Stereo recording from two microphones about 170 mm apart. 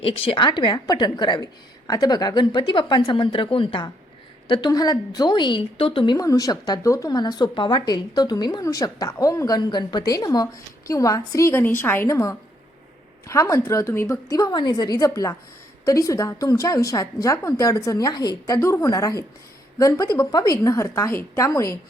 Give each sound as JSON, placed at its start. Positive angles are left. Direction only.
{"t": 0.0, "sound": "a woman's voice", "side_deg": 35}